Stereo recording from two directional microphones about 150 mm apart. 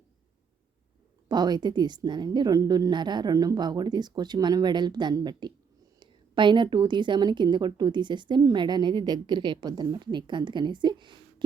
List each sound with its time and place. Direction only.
1.3 s a woman's voice: 30° right (ahead or behind)